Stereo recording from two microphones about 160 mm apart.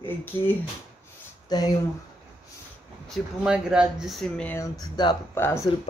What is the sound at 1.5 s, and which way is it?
Speech, 25° left (ahead or behind).